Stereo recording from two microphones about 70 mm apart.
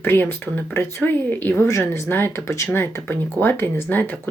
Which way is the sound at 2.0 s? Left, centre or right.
Left.